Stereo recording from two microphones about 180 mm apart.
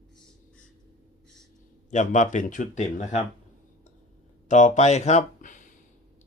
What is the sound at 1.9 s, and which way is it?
Speech, 40° left (ahead or behind).